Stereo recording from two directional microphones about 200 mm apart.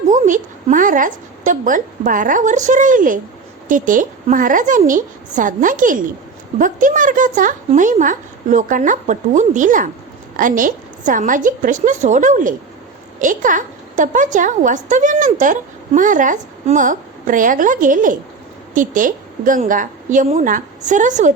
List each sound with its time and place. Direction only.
0.1 s a woman's voice: 40° right (ahead or behind)